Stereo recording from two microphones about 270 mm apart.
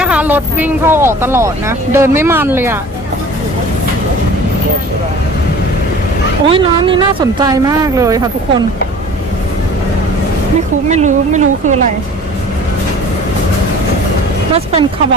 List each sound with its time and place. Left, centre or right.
0.0 s speech: centre
6.5 s speech: centre
10.8 s a woman's voice: right
14.5 s a woman's voice: right